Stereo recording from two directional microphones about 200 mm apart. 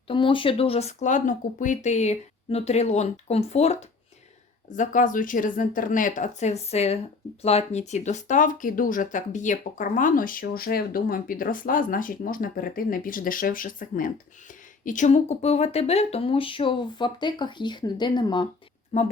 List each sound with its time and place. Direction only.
0.1 s speech: 25° left (ahead or behind)